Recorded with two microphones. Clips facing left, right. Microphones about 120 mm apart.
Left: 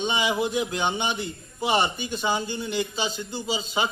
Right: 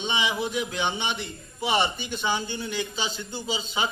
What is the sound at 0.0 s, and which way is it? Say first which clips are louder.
A man's voice: left 3 dB; 45° left (ahead or behind).